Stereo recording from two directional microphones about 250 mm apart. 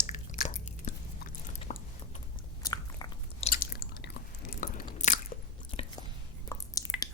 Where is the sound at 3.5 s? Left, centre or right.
Left.